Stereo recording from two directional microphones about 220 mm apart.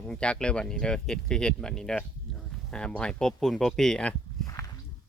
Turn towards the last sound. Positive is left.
turn(degrees=15)  # may be behind; listen again after turning